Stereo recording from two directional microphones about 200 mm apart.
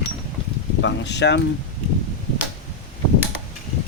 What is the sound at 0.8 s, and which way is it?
Speech, 60° left (ahead or behind).